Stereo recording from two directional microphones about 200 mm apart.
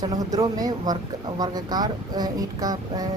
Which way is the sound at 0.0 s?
20° right (ahead or behind).